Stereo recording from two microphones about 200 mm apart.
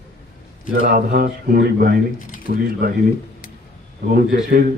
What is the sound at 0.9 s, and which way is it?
Speech, 45° right (ahead or behind).